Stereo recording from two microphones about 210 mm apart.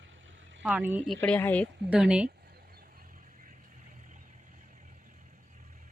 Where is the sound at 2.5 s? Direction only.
45° right (ahead or behind).